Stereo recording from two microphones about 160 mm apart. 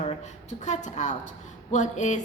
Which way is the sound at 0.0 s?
45° left (ahead or behind).